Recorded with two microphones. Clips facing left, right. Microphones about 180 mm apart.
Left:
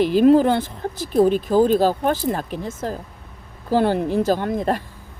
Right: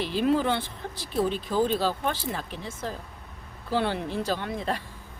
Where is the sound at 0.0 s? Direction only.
45° left (ahead or behind).